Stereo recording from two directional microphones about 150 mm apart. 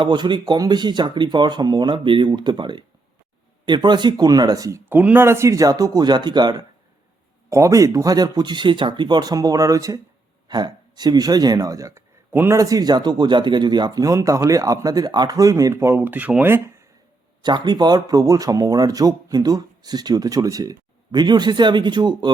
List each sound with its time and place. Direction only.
0.0 s speech: 30° right (ahead or behind); by 16.7 s 15° right (ahead or behind)
17.4 s speech: 30° right (ahead or behind)